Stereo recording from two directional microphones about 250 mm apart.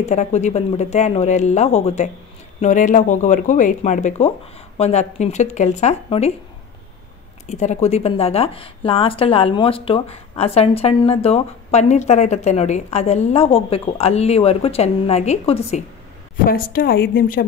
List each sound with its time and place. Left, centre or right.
0.0 s speech: left
7.4 s speech: left
16.4 s speech: left